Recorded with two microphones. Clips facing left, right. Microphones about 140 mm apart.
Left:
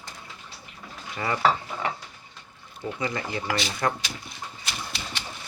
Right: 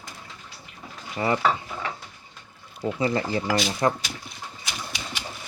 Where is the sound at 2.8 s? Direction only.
35° right (ahead or behind).